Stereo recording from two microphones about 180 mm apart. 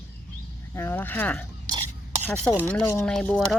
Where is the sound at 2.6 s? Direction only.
10° left (ahead or behind).